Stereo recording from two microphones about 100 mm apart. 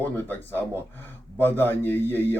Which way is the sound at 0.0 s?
20° left (ahead or behind).